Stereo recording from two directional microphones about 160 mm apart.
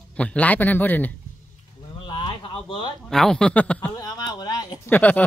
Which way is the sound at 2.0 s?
30° left (ahead or behind).